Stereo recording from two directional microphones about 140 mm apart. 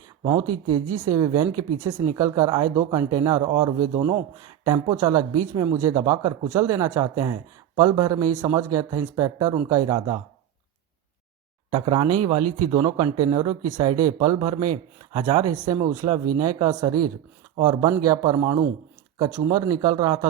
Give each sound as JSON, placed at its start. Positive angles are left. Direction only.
{"t": 0.3, "sound": "speech", "side_deg": -25}
{"t": 11.7, "sound": "speech", "side_deg": -40}